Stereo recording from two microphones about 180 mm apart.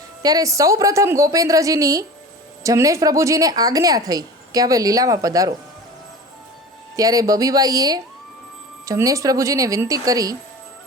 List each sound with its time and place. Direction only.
0.2 s a woman's voice: 20° right (ahead or behind)
6.9 s a woman's voice: 20° right (ahead or behind)